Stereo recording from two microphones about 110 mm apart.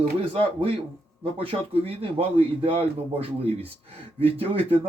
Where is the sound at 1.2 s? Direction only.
60° right (ahead or behind).